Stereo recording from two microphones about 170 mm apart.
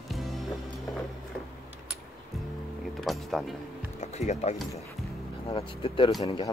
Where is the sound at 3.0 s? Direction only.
Centre (ahead or behind).